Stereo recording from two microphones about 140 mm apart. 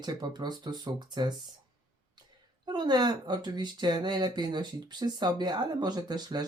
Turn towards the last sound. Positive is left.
turn(degrees=-30)  # may be behind; listen again after turning